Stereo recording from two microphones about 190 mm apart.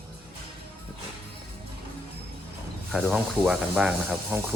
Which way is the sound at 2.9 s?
5° right (ahead or behind).